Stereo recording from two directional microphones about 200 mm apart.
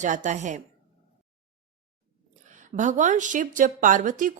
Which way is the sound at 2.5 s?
40° right (ahead or behind).